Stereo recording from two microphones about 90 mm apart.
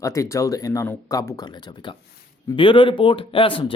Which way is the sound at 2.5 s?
70° left (ahead or behind).